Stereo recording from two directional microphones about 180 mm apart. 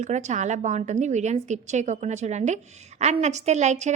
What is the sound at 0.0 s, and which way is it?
A woman's voice, 40° right (ahead or behind).